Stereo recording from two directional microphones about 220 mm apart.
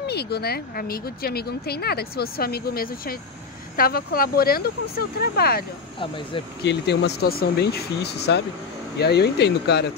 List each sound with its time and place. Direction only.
0.0 s speech: 45° left (ahead or behind)
5.9 s speech: 25° left (ahead or behind)
6.6 s speech: 50° left (ahead or behind)